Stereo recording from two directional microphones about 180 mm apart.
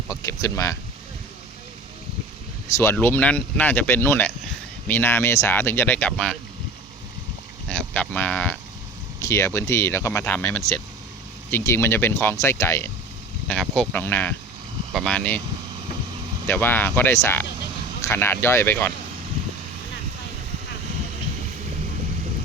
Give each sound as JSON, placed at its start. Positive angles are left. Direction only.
{"t": 0.1, "sound": "speech", "side_deg": 20}
{"t": 2.7, "sound": "speech", "side_deg": 10}
{"t": 7.7, "sound": "speech", "side_deg": 5}
{"t": 16.5, "sound": "speech", "side_deg": 10}